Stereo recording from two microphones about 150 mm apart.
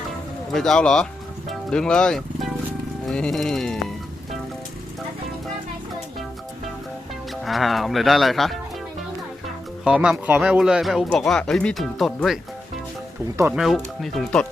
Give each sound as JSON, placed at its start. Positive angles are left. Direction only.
{"t": 0.5, "sound": "speech", "side_deg": 5}
{"t": 3.1, "sound": "music", "side_deg": 0}
{"t": 7.4, "sound": "speech", "side_deg": 0}
{"t": 9.8, "sound": "speech", "side_deg": -5}
{"t": 13.6, "sound": "speech", "side_deg": 0}